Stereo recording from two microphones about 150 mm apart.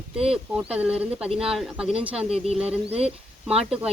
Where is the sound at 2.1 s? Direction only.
40° right (ahead or behind).